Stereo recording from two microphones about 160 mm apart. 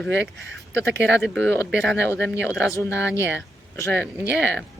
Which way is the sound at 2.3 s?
15° left (ahead or behind).